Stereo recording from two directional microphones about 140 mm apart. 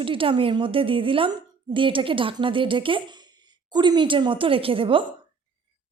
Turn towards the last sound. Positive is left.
turn(degrees=-40)  # may be behind; listen again after turning